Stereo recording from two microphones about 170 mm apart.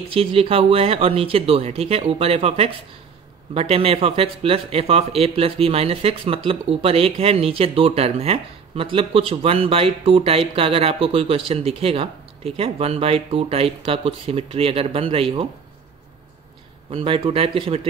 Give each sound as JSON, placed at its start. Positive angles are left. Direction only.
{"t": 0.1, "sound": "speech", "side_deg": -35}
{"t": 16.9, "sound": "speech", "side_deg": -30}